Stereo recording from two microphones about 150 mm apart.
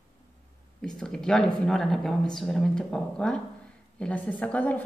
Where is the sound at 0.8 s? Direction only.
5° left (ahead or behind).